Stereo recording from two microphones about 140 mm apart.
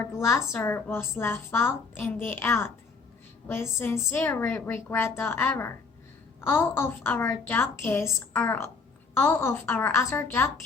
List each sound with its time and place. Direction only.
0.0 s speech: 20° left (ahead or behind)